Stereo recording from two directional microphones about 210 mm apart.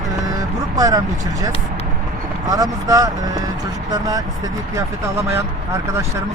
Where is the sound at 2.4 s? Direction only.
15° right (ahead or behind).